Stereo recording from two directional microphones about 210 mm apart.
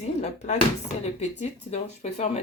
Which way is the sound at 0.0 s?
30° left (ahead or behind).